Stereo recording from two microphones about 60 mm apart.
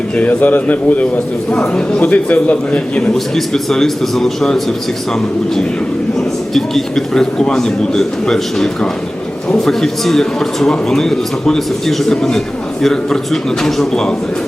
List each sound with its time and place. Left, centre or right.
0.2 s a man's voice: left
1.5 s a man's voice: centre
3.3 s a man's voice: centre
6.1 s speech: centre